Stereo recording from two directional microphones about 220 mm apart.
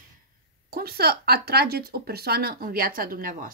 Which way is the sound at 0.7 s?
45° right (ahead or behind).